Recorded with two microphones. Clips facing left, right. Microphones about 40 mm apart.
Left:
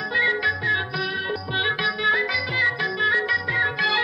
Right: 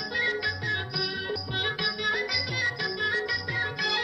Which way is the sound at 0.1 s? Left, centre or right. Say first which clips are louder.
Left 7 dB; left.